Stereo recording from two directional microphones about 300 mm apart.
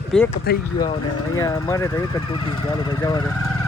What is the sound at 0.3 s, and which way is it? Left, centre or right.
Speech, left.